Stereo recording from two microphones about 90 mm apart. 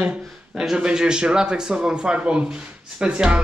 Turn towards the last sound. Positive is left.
turn(degrees=-10)  # may be behind; listen again after turning